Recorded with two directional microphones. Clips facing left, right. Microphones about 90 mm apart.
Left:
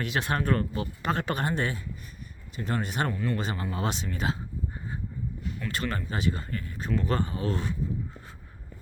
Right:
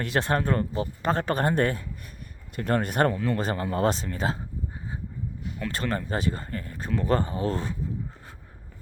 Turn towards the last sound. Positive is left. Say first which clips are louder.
# right 2 dB
turn(degrees=-35)  # may be behind; listen again after turning